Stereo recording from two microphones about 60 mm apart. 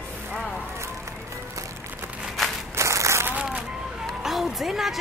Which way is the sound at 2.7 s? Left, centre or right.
Right.